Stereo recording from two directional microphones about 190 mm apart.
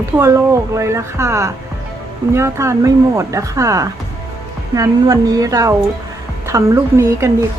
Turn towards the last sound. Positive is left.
turn(degrees=-15)  # may be behind; listen again after turning